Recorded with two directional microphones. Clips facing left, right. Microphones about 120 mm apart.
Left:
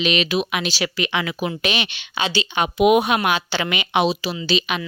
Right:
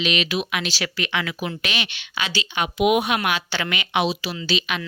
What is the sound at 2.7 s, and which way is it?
Speech, 40° left (ahead or behind).